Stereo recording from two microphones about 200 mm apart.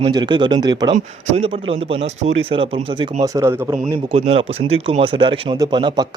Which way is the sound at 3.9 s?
25° right (ahead or behind).